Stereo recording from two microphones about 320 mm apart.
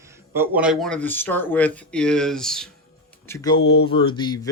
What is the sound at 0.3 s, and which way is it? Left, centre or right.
Speech, centre.